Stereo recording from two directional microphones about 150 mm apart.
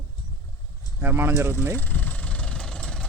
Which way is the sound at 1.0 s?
15° right (ahead or behind).